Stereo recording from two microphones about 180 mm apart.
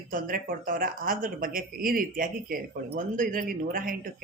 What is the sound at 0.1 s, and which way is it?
Speech, 50° right (ahead or behind).